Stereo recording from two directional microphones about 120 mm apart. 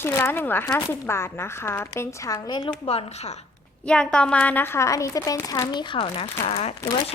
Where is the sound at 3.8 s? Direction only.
10° left (ahead or behind); by 6.7 s 55° left (ahead or behind).